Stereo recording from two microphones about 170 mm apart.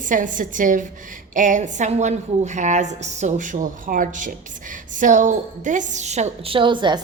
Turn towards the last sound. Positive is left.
turn(degrees=-30)  # may be behind; listen again after turning